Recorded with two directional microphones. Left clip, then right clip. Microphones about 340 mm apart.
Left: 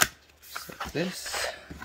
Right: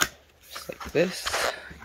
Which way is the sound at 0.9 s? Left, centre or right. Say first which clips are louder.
Right 8 dB; centre.